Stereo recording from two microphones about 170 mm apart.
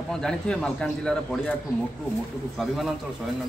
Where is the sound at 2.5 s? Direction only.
Centre (ahead or behind).